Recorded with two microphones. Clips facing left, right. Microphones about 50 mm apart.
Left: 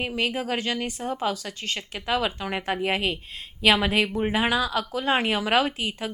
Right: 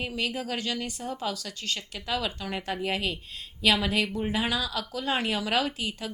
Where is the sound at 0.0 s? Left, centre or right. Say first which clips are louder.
Left 4 dB; left.